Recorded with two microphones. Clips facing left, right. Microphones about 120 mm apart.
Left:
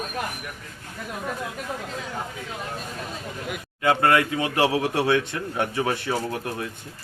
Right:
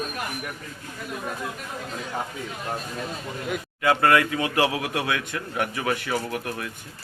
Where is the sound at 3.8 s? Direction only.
25° left (ahead or behind).